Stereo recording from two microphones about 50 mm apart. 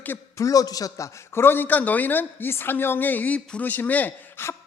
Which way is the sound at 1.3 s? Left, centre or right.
Left.